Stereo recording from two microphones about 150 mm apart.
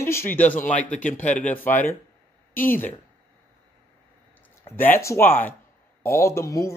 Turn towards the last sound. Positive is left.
turn(degrees=20)  # may be behind; listen again after turning